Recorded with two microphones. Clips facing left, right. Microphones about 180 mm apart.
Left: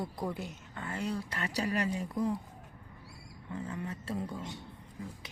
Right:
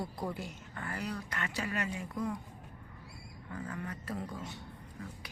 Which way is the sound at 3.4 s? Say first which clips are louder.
Left 2 dB; 25° left (ahead or behind).